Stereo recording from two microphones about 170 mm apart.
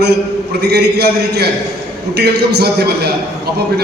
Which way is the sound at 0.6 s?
75° right (ahead or behind).